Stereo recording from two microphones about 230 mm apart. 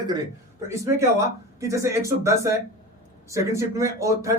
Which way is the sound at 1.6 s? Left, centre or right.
Centre.